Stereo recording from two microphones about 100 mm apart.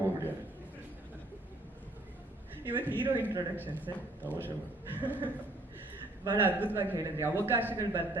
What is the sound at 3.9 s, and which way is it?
Speech, 35° right (ahead or behind).